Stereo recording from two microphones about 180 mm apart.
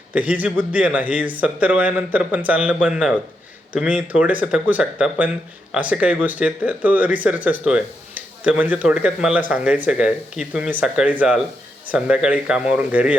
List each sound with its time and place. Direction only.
0.1 s speech: 10° right (ahead or behind)